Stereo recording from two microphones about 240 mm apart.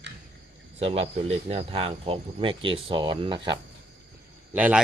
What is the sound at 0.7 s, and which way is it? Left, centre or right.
Speech, right.